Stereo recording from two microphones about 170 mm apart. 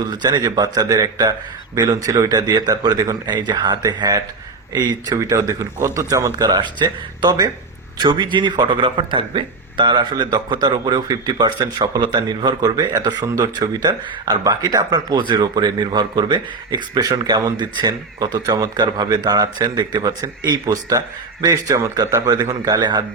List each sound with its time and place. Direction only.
0.0 s speech: 25° right (ahead or behind)